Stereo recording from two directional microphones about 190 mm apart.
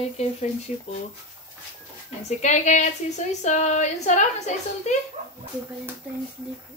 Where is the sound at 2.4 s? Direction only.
40° left (ahead or behind).